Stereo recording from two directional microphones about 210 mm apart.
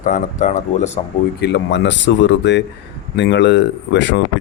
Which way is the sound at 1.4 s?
55° left (ahead or behind).